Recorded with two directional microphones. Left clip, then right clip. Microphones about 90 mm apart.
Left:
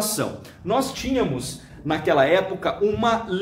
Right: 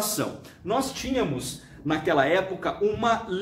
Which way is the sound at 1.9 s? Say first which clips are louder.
Left 4 dB; 35° left (ahead or behind).